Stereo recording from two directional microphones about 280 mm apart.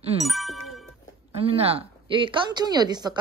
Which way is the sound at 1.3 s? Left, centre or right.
Right.